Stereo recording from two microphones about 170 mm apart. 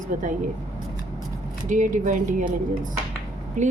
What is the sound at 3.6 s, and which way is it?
Speech, 50° right (ahead or behind).